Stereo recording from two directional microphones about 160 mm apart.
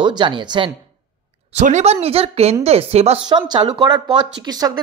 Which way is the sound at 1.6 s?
45° right (ahead or behind).